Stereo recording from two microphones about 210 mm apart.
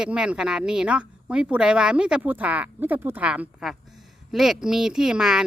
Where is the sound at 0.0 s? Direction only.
5° right (ahead or behind).